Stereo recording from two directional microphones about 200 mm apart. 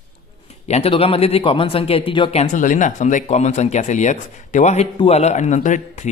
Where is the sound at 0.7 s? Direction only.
30° left (ahead or behind).